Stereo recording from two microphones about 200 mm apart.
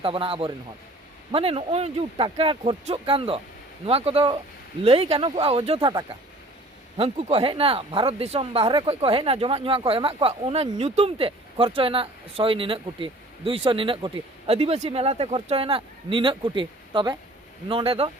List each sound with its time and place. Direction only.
0.0 s speech: 25° right (ahead or behind)
6.9 s speech: 30° right (ahead or behind)